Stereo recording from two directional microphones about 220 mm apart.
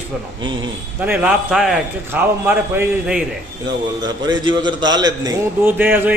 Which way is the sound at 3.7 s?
20° right (ahead or behind).